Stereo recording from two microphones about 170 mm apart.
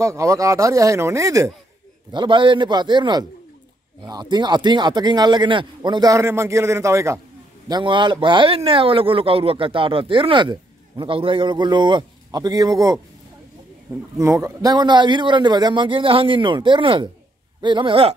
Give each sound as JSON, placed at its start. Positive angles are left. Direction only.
{"t": 0.0, "sound": "speech", "side_deg": -20}
{"t": 2.1, "sound": "speech", "side_deg": -30}
{"t": 14.1, "sound": "speech", "side_deg": -15}